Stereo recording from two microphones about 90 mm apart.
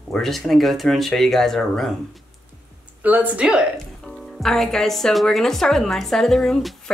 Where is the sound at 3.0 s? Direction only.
20° right (ahead or behind).